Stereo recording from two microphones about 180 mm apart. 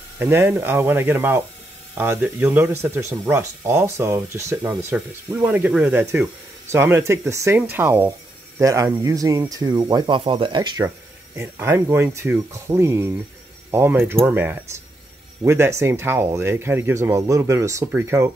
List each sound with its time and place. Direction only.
0.2 s speech: 15° right (ahead or behind)
11.3 s speech: 10° right (ahead or behind)